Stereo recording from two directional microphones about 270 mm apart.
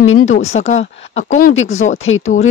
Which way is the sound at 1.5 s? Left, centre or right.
Left.